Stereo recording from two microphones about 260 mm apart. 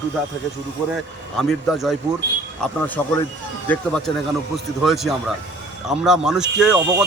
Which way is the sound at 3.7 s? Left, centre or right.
Centre.